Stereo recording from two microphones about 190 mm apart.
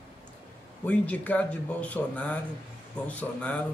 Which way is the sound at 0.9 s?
5° left (ahead or behind).